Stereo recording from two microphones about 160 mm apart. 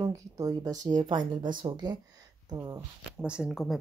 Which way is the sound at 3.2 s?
5° right (ahead or behind).